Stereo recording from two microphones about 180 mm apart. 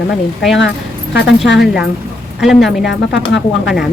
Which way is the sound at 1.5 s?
Centre (ahead or behind).